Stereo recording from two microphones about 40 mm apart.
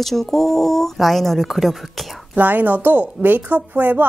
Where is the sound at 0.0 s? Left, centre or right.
Centre.